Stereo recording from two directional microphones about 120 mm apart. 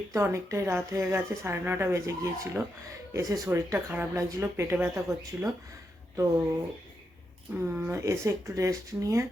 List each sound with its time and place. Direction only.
0.1 s speech: 25° right (ahead or behind)
7.5 s speech: 15° right (ahead or behind)